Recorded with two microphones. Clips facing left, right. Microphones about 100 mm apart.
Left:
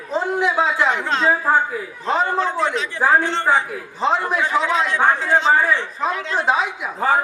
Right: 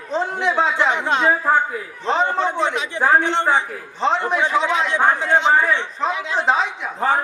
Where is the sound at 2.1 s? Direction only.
5° left (ahead or behind).